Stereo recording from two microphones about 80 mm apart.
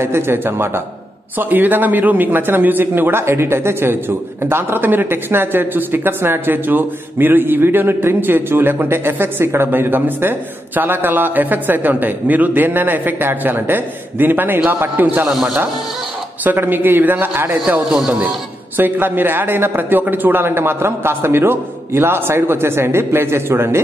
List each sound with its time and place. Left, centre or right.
0.0 s a man's voice: right
15.2 s speech: centre
16.4 s a man's voice: right
17.8 s speech: centre
18.8 s a man's voice: right